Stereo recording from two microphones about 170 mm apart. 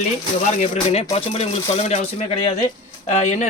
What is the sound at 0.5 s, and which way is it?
Speech, 45° left (ahead or behind).